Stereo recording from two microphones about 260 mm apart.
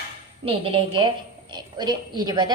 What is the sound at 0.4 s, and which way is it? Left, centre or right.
A woman's voice, right.